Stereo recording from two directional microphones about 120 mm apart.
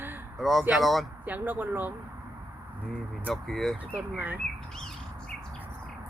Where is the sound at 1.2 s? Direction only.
15° right (ahead or behind).